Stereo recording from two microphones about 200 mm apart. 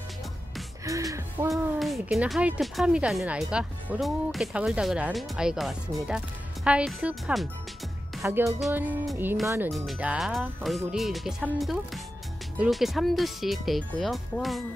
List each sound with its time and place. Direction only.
0.8 s music: 15° right (ahead or behind)
1.5 s speech: centre (ahead or behind)
8.5 s music: centre (ahead or behind)
9.7 s speech: centre (ahead or behind)